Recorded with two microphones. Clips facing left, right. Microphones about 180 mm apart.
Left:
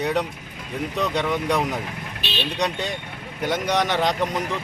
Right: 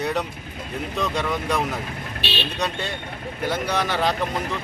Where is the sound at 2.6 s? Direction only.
15° left (ahead or behind).